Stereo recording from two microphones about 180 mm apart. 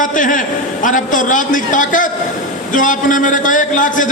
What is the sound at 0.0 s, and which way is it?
A man's voice, 45° left (ahead or behind).